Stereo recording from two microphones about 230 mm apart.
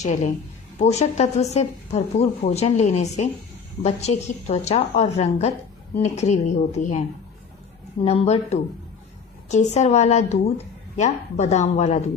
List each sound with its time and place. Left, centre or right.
0.0 s a woman's voice: left
8.0 s a woman's voice: left